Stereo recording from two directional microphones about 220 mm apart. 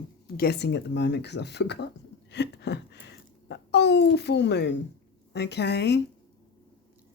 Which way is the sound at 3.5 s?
50° left (ahead or behind).